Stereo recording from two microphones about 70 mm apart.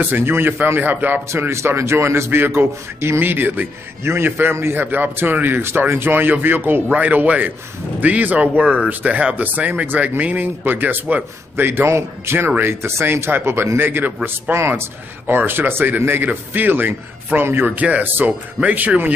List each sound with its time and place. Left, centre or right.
0.0 s speech: right
1.3 s a man's voice: right
17.6 s speech: right